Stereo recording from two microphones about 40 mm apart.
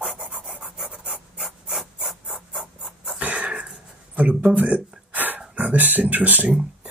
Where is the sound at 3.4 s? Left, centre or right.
Right.